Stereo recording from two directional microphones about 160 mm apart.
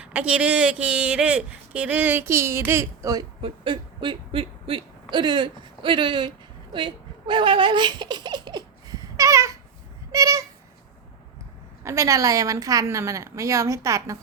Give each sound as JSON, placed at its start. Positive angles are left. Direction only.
{"t": 0.0, "sound": "speech", "side_deg": -5}
{"t": 3.4, "sound": "speech", "side_deg": -30}
{"t": 6.7, "sound": "baby laughter", "side_deg": -30}
{"t": 10.1, "sound": "a sound", "side_deg": -20}
{"t": 11.8, "sound": "a woman's voice", "side_deg": -20}